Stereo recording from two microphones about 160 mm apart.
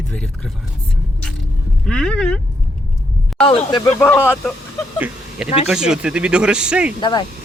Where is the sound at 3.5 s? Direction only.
35° left (ahead or behind).